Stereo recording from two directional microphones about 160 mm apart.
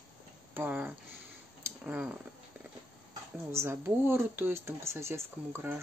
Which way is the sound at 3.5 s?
15° right (ahead or behind).